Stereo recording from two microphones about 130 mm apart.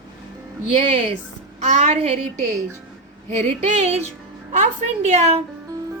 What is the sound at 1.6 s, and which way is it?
Speech, 55° right (ahead or behind).